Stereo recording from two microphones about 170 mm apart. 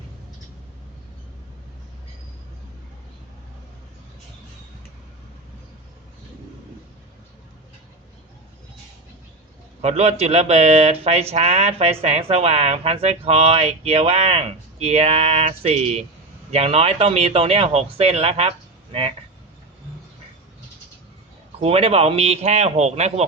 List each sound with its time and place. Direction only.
9.8 s speech: 40° right (ahead or behind)
21.6 s speech: 35° right (ahead or behind)